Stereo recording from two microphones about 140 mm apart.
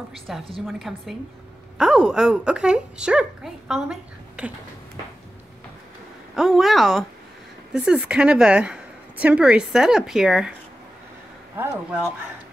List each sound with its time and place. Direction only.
0.6 s a woman's voice: centre (ahead or behind)
6.3 s a woman's voice: centre (ahead or behind)
11.5 s a woman's voice: 15° right (ahead or behind)